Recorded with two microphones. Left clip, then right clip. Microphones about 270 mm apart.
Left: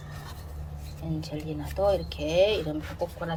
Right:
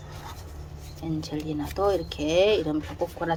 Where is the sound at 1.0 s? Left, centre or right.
Centre.